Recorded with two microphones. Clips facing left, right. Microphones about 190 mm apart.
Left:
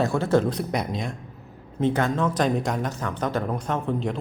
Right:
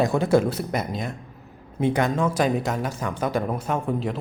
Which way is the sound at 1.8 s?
10° right (ahead or behind).